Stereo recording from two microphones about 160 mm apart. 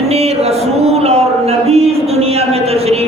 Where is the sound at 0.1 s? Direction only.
40° right (ahead or behind).